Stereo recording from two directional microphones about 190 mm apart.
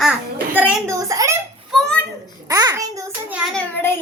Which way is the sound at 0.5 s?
10° right (ahead or behind).